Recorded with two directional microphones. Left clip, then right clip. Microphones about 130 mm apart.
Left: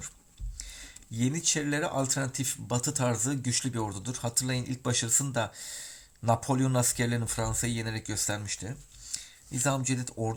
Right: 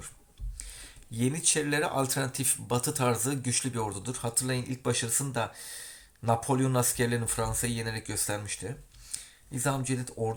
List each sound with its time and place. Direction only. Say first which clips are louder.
0.5 s speech: left 2 dB; 20° left (ahead or behind)